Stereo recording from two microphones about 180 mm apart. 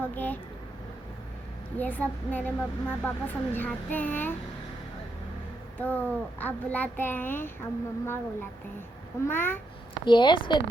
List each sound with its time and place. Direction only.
0.0 s a sound: 10° left (ahead or behind)
1.8 s a child's voice: 10° left (ahead or behind)
5.7 s a child's voice: 10° left (ahead or behind)
10.1 s a woman's voice: 25° left (ahead or behind)